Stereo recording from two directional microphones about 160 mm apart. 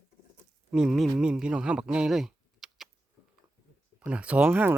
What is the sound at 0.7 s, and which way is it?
Speech, centre (ahead or behind).